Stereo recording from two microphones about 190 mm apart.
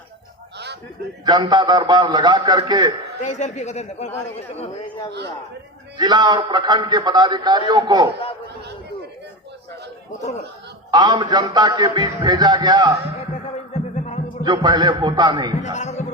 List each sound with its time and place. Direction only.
1.2 s a man's voice: 20° right (ahead or behind)
3.2 s speech: 40° left (ahead or behind)
6.0 s a man's voice: 20° right (ahead or behind)
10.9 s a man's voice: 20° right (ahead or behind)
14.4 s a man's voice: 25° right (ahead or behind)
15.6 s speech: 35° left (ahead or behind)